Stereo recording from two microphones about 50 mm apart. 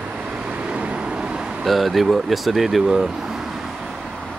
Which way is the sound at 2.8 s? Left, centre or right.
Centre.